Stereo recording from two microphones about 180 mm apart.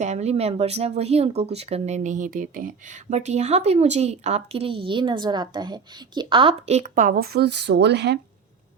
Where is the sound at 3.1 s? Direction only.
40° right (ahead or behind); by 8.1 s 70° right (ahead or behind).